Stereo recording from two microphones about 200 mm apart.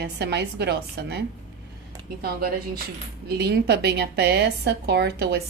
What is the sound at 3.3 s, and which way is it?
A woman's voice, 55° right (ahead or behind).